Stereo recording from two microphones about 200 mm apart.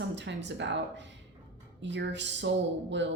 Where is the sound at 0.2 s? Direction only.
60° right (ahead or behind).